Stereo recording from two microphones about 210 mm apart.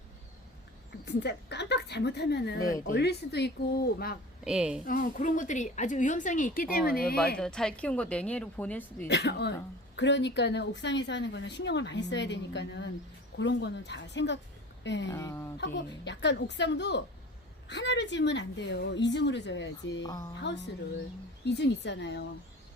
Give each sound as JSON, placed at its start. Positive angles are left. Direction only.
{"t": 1.0, "sound": "a woman's voice", "side_deg": 50}
{"t": 4.4, "sound": "speech", "side_deg": -5}
{"t": 4.9, "sound": "a woman's voice", "side_deg": 40}
{"t": 7.3, "sound": "speech", "side_deg": 5}
{"t": 9.0, "sound": "a woman's voice", "side_deg": 55}
{"t": 15.1, "sound": "speech", "side_deg": 15}
{"t": 15.5, "sound": "a woman's voice", "side_deg": 55}
{"t": 20.0, "sound": "speech", "side_deg": 20}
{"t": 20.4, "sound": "a woman's voice", "side_deg": 55}